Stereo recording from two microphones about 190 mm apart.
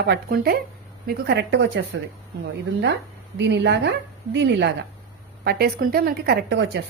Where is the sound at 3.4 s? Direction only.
65° right (ahead or behind).